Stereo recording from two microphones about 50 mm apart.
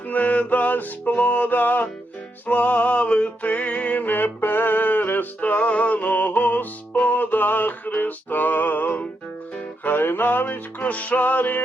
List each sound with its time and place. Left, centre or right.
0.1 s music: left
4.0 s music: left